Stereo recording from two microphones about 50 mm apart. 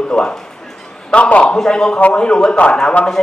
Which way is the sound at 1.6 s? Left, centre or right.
Centre.